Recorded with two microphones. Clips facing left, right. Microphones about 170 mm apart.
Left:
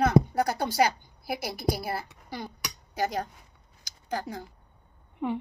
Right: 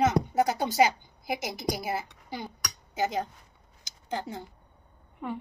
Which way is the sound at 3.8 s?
25° right (ahead or behind).